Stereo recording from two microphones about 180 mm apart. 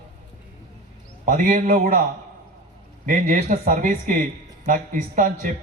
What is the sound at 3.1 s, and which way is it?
Speech, 45° right (ahead or behind).